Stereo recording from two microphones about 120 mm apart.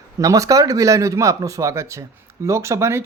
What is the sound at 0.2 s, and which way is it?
Speech, 30° right (ahead or behind).